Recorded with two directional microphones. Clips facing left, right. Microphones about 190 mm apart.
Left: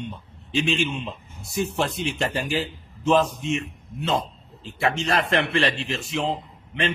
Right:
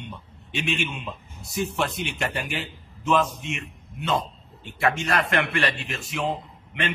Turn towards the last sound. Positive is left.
turn(degrees=30)  # may be behind; listen again after turning